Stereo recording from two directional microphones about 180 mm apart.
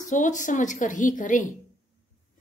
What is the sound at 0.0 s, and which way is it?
A woman's voice, 45° left (ahead or behind).